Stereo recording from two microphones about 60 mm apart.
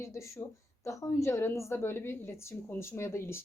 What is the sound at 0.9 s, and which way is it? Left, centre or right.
Speech, left.